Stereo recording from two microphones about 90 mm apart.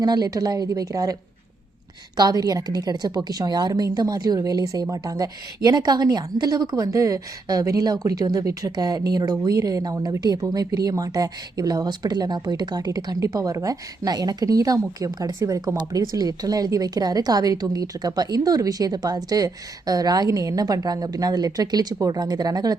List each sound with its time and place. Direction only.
0.0 s speech: 50° right (ahead or behind)
2.1 s speech: 45° right (ahead or behind)